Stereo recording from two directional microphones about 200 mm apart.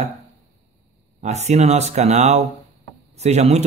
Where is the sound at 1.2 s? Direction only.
35° right (ahead or behind).